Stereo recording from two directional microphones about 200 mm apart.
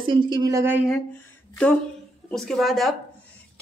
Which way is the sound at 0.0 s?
25° right (ahead or behind).